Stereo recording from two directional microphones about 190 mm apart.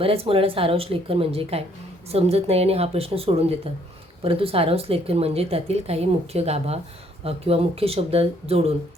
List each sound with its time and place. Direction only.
0.0 s speech: 30° right (ahead or behind)